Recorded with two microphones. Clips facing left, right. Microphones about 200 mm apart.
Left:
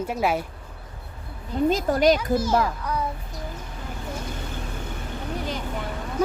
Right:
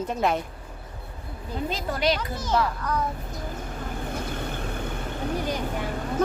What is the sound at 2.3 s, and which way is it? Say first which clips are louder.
Speech: left 4 dB; 10° left (ahead or behind).